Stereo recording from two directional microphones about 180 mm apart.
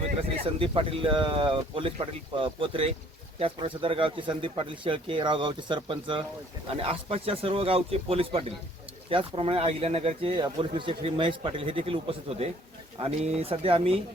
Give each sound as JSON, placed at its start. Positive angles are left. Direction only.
{"t": 0.4, "sound": "speech", "side_deg": -30}